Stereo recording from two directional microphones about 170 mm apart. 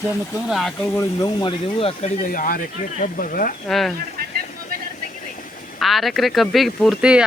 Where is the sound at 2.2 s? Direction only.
50° left (ahead or behind).